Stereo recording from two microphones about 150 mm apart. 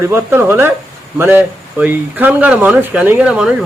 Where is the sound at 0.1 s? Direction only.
15° right (ahead or behind).